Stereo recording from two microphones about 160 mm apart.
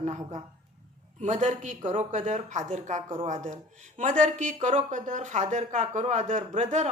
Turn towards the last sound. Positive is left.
turn(degrees=-45)  # may be behind; listen again after turning